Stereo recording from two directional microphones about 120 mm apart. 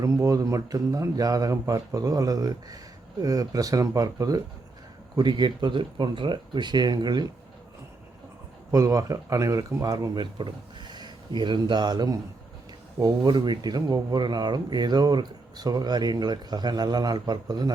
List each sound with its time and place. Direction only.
0.0 s speech: 25° right (ahead or behind)
8.7 s speech: 25° right (ahead or behind)